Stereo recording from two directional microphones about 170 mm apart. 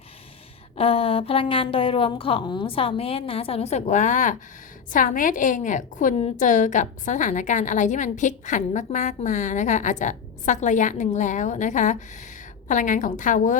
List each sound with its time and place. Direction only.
0.8 s a woman's voice: 35° left (ahead or behind); by 13.6 s 50° left (ahead or behind)